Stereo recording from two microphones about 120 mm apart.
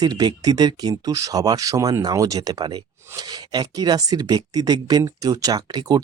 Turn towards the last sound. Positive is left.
turn(degrees=-35)  # may be behind; listen again after turning